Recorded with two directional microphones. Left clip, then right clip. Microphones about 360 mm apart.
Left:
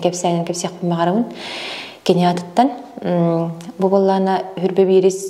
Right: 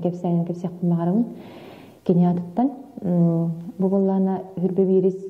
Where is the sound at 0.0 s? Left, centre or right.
Centre.